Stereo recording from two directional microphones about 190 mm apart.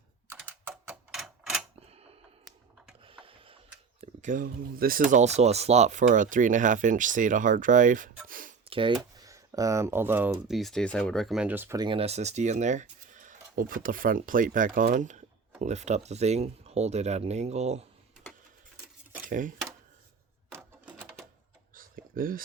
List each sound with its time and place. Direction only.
0.3 s typing: 10° right (ahead or behind)
3.1 s a sound: 25° right (ahead or behind)
4.0 s speech: 40° right (ahead or behind)
8.3 s a sound: 45° right (ahead or behind)
8.7 s speech: 25° right (ahead or behind); by 11.8 s 10° right (ahead or behind)
11.8 s speech: 30° right (ahead or behind)
19.2 s speech: 45° right (ahead or behind)
20.6 s sewing machine: centre (ahead or behind)
21.8 s a sound: 50° right (ahead or behind)